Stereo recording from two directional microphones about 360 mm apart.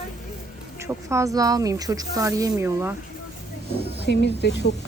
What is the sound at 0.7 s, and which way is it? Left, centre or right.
A woman's voice, centre.